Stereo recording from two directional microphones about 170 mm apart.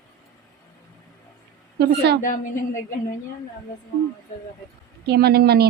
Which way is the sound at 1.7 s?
75° right (ahead or behind).